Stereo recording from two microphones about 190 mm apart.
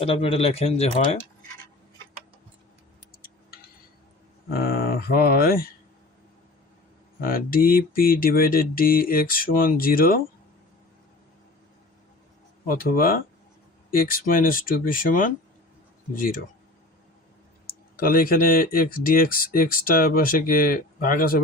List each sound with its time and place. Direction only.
0.0 s speech: 30° left (ahead or behind)
4.4 s speech: 55° left (ahead or behind)
7.2 s speech: 50° left (ahead or behind)
12.6 s speech: 50° left (ahead or behind)
17.7 s speech: 50° left (ahead or behind)